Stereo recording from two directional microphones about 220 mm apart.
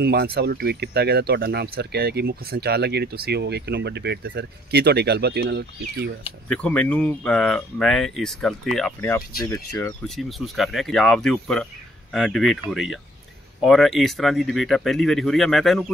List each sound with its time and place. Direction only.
0.0 s speech: 45° right (ahead or behind)
6.5 s speech: 5° left (ahead or behind)
9.4 s speech: 15° left (ahead or behind)
10.0 s speech: centre (ahead or behind)